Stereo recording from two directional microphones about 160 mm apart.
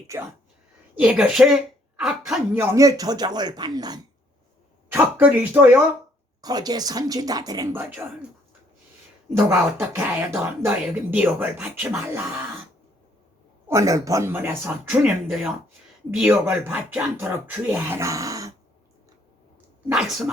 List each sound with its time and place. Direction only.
0.1 s speech: 15° right (ahead or behind)
2.6 s speech: 20° right (ahead or behind)
4.9 s speech: 10° right (ahead or behind)
6.4 s speech: 25° right (ahead or behind)
9.5 s speech: 10° right (ahead or behind)
13.7 s speech: 20° right (ahead or behind)
15.3 s speech: centre (ahead or behind); by 18.5 s 20° right (ahead or behind)
19.9 s speech: centre (ahead or behind)